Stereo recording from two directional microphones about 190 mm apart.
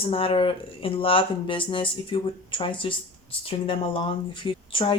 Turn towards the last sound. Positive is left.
turn(degrees=25)  # may be behind; listen again after turning